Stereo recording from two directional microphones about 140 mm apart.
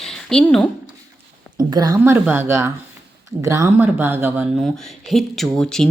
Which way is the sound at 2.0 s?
15° right (ahead or behind).